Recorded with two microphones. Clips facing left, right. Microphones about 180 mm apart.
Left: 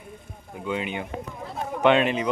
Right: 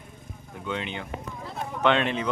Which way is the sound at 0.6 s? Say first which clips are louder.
Left 4 dB; 10° left (ahead or behind).